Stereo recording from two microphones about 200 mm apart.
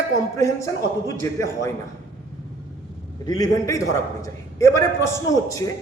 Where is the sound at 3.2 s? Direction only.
20° left (ahead or behind).